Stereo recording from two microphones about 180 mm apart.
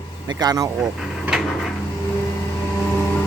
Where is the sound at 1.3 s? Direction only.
5° right (ahead or behind).